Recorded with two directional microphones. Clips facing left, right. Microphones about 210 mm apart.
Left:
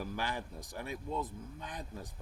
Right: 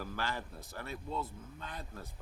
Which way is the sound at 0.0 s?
15° left (ahead or behind).